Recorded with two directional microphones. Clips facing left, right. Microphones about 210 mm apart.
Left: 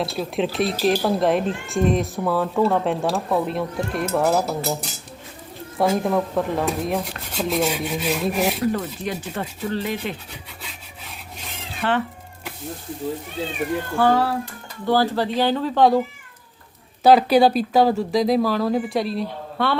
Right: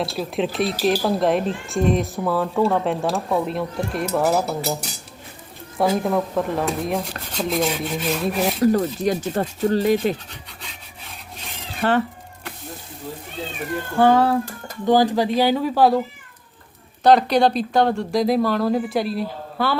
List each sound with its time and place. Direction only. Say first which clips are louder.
0.0 s speech: even; centre (ahead or behind)
8.6 s speech: right 6 dB; 40° right (ahead or behind)
11.8 s speech: right 3 dB; 40° right (ahead or behind)
14.0 s speech: right 4 dB; 20° right (ahead or behind)
17.0 s speech: left 1 dB; 5° left (ahead or behind)